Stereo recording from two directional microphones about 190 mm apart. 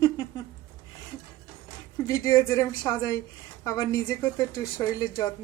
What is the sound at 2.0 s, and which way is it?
A woman's voice, 15° left (ahead or behind).